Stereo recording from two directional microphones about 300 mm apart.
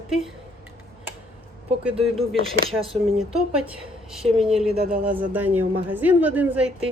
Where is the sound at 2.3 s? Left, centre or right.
Centre.